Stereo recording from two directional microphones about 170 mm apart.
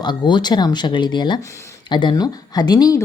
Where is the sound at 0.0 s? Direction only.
25° left (ahead or behind).